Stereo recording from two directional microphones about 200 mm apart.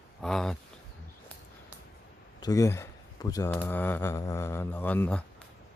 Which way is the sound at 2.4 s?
15° left (ahead or behind).